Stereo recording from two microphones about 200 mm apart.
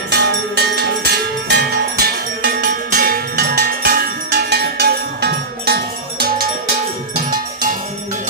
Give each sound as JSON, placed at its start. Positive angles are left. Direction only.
{"t": 0.1, "sound": "music", "side_deg": -55}
{"t": 7.3, "sound": "cowbell", "side_deg": -45}